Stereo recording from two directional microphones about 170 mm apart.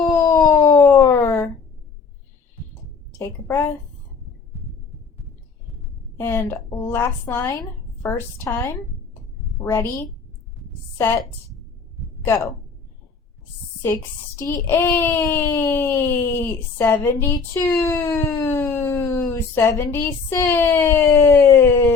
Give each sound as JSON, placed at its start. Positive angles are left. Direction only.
{"t": 0.1, "sound": "a sound", "side_deg": 20}
{"t": 3.1, "sound": "a woman's voice", "side_deg": 15}
{"t": 6.1, "sound": "speech", "side_deg": 15}
{"t": 10.9, "sound": "a woman's voice", "side_deg": 15}
{"t": 13.8, "sound": "speech", "side_deg": 15}